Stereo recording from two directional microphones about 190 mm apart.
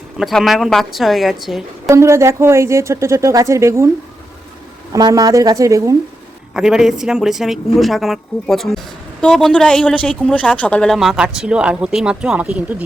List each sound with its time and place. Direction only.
0.2 s speech: centre (ahead or behind)
1.9 s speech: 15° right (ahead or behind)
4.9 s speech: 20° right (ahead or behind)
6.5 s speech: 5° right (ahead or behind)